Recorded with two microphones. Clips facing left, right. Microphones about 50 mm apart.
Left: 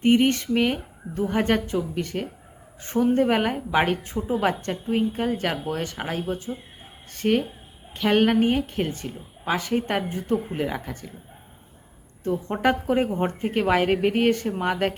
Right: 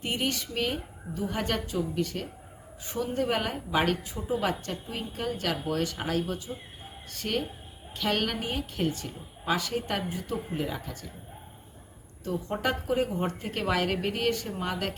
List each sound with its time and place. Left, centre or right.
0.0 s a woman's voice: left
12.2 s a woman's voice: left